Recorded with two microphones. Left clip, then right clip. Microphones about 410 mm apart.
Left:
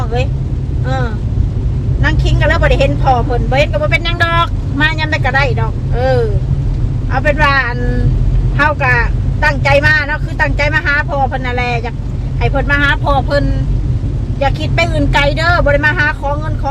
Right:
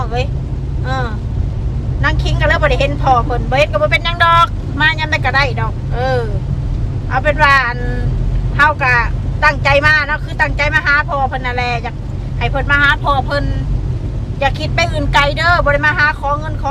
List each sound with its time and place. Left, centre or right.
0.9 s vehicle: centre
2.0 s speech: centre